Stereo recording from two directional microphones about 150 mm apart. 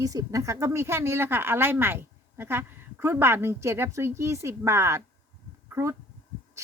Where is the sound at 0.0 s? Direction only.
25° right (ahead or behind).